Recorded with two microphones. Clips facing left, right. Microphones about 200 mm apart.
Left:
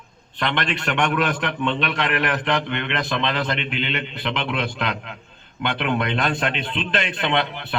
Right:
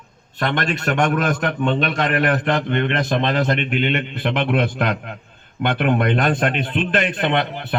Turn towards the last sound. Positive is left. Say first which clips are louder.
# right 3 dB
turn(degrees=-45)  # may be behind; listen again after turning